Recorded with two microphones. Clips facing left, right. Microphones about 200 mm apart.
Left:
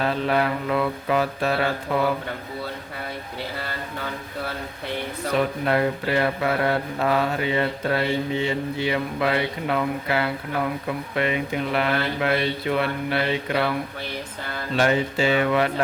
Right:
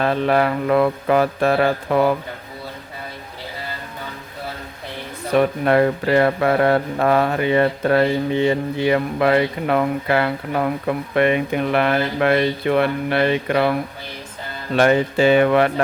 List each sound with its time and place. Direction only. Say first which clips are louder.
0.0 s speech: right 5 dB; 60° right (ahead or behind)
5.4 s speech: right 7 dB; 60° right (ahead or behind)
14.8 s speech: right 6 dB; 55° right (ahead or behind)